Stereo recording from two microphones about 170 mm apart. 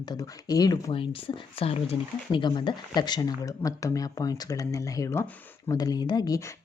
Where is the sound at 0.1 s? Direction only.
20° left (ahead or behind).